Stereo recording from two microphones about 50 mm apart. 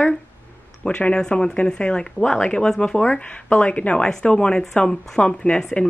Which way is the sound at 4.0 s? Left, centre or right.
Centre.